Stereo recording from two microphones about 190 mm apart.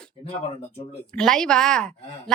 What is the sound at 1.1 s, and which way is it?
Speech, 5° left (ahead or behind).